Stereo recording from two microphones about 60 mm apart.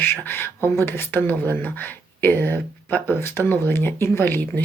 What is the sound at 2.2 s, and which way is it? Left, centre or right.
Speech, left.